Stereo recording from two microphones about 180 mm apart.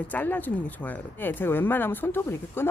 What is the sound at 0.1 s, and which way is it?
Speech, 10° left (ahead or behind).